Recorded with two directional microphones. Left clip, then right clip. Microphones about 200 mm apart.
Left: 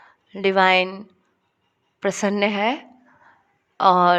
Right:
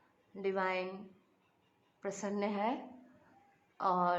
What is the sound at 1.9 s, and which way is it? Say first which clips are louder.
A woman's voice: left 17 dB; 30° left (ahead or behind).